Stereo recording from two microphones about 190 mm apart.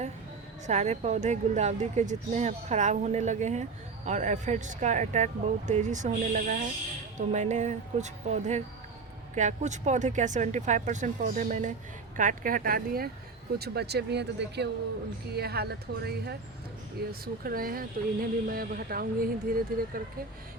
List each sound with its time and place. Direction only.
0.7 s speech: 35° right (ahead or behind)